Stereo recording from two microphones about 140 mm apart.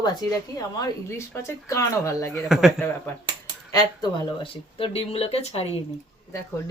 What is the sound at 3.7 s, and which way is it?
Speech, 35° left (ahead or behind).